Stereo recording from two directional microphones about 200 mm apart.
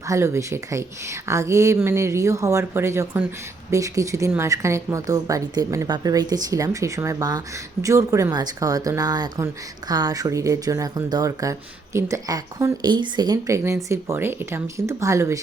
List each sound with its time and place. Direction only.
0.1 s a woman's voice: 15° right (ahead or behind)